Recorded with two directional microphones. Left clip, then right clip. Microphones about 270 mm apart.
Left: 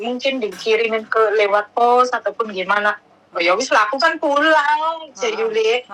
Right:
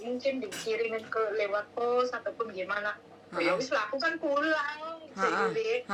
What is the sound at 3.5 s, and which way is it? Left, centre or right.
Speech, left.